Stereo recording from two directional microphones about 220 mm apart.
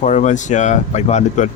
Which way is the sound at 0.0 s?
30° left (ahead or behind).